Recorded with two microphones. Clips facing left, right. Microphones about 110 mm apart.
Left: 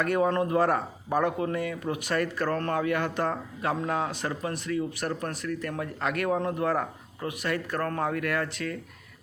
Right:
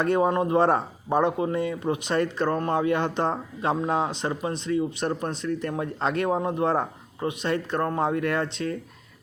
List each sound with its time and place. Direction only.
0.0 s speech: 25° right (ahead or behind)